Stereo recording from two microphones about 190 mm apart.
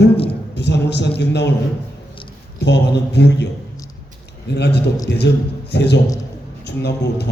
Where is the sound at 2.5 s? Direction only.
60° left (ahead or behind).